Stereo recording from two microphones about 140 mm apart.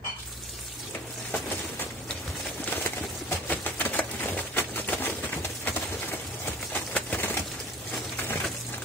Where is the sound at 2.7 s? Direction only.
20° left (ahead or behind).